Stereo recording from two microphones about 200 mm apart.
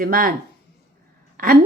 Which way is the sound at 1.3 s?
45° right (ahead or behind).